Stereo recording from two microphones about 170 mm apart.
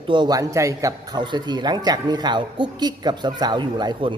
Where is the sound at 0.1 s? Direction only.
25° right (ahead or behind).